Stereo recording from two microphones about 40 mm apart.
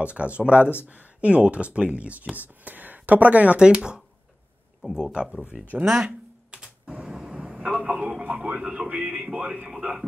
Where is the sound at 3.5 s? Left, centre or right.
Right.